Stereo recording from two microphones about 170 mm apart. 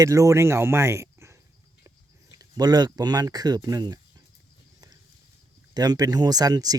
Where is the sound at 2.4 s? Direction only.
25° right (ahead or behind).